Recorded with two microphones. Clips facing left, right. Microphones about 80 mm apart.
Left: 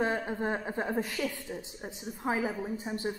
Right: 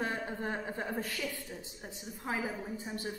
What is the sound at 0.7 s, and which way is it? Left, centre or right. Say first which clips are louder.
A woman's voice: left 5 dB; left.